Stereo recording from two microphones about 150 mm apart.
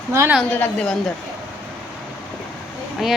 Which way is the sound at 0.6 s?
5° left (ahead or behind).